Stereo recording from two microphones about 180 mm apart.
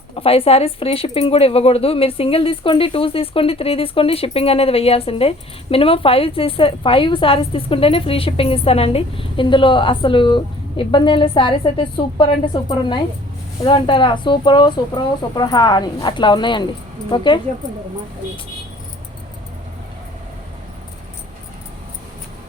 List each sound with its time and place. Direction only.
0.2 s a woman's voice: 30° left (ahead or behind)